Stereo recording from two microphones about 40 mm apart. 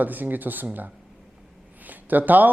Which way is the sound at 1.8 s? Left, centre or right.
Right.